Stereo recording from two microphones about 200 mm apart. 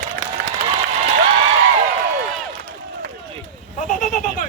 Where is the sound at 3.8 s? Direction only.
40° left (ahead or behind).